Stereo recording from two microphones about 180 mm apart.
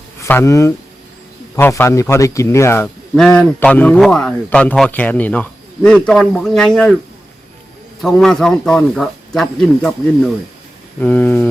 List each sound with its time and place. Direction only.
0.2 s a man's voice: 15° left (ahead or behind)
8.0 s a man's voice: centre (ahead or behind)
11.0 s speech: 10° left (ahead or behind)